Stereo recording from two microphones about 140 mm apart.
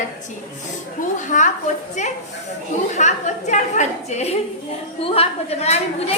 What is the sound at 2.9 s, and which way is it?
A woman's voice, 55° left (ahead or behind).